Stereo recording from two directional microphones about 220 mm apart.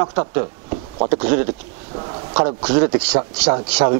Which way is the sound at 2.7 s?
10° right (ahead or behind).